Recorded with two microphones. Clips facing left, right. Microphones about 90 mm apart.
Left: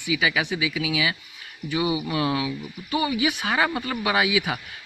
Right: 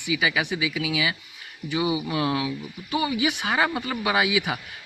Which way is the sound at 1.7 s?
20° right (ahead or behind).